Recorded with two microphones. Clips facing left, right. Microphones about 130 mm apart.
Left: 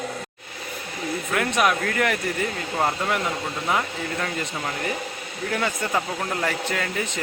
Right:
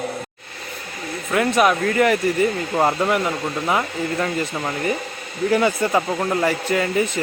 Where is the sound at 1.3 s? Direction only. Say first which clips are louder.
Right 5 dB; 5° right (ahead or behind).